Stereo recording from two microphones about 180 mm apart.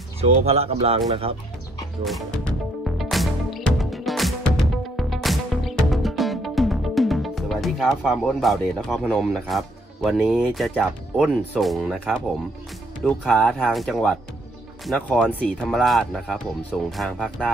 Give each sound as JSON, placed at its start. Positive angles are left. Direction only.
{"t": 0.2, "sound": "speech", "side_deg": -35}
{"t": 2.0, "sound": "music", "side_deg": 0}
{"t": 13.0, "sound": "speech", "side_deg": 5}